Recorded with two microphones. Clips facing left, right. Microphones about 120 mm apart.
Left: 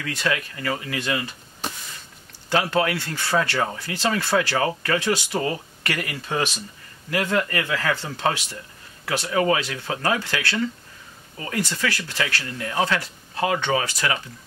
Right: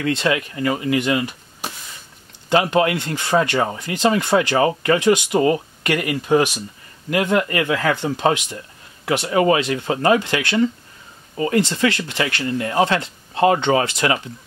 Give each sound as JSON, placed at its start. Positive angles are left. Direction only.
{"t": 0.0, "sound": "speech", "side_deg": -25}